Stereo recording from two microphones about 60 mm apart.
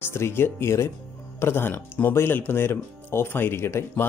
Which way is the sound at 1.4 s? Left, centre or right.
Left.